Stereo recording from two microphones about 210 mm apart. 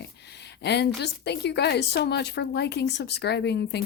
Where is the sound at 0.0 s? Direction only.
55° left (ahead or behind).